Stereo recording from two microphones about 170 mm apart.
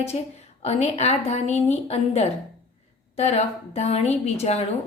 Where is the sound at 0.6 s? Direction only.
40° left (ahead or behind).